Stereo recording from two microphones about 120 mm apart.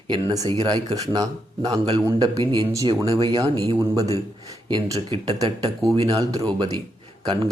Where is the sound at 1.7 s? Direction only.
50° right (ahead or behind).